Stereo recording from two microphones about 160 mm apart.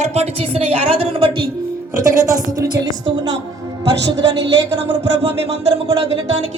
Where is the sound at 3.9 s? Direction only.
90° right.